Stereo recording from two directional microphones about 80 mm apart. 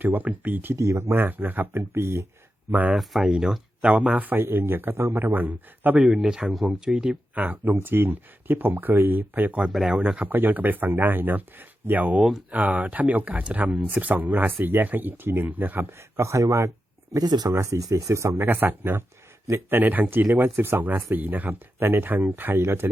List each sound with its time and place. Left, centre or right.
0.0 s speech: right
0.8 s speech: right
2.9 s speech: centre
3.8 s speech: centre
6.0 s speech: centre; by 9.6 s right
9.6 s speech: centre
9.9 s speech: centre; by 17.2 s right
17.2 s speech: right
17.5 s speech: right
18.4 s speech: right